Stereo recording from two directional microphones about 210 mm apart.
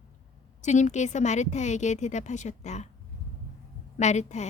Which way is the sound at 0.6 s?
35° left (ahead or behind).